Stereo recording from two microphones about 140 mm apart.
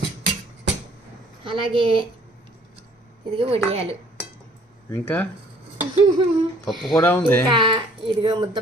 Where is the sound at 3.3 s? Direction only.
45° right (ahead or behind).